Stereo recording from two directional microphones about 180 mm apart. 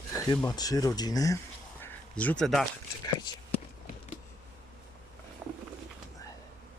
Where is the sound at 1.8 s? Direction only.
10° left (ahead or behind).